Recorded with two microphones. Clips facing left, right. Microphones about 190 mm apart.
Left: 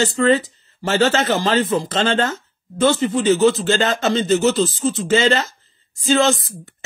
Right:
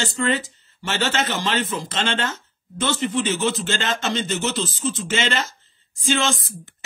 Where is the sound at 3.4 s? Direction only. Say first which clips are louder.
Left 8 dB; 40° left (ahead or behind).